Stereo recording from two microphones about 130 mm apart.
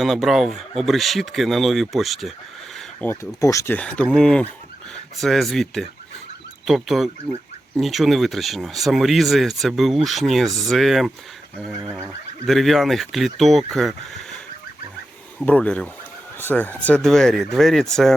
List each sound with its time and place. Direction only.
0.0 s speech: centre (ahead or behind)
3.0 s speech: 15° left (ahead or behind)
3.4 s speech: 25° left (ahead or behind)
3.8 s speech: 10° left (ahead or behind)
11.8 s a sound: 20° right (ahead or behind)
12.0 s speech: centre (ahead or behind)
15.4 s speech: 10° left (ahead or behind)